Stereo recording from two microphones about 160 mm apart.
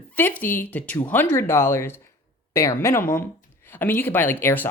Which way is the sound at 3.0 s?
60° left (ahead or behind).